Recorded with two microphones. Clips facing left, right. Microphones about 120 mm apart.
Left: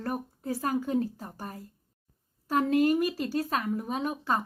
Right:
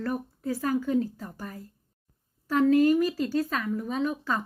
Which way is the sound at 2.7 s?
20° left (ahead or behind).